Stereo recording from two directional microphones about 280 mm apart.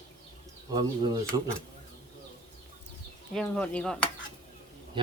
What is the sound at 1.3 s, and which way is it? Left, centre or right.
Speech, centre.